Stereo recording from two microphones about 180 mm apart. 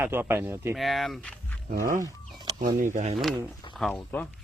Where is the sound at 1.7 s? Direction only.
50° right (ahead or behind).